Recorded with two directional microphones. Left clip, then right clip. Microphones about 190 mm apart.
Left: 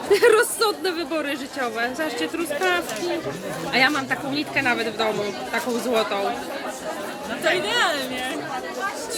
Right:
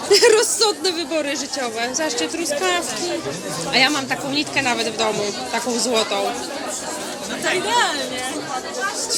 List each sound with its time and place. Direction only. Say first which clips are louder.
0.1 s speech: right 3 dB; 5° left (ahead or behind)
7.7 s speech: right 6 dB; 30° left (ahead or behind)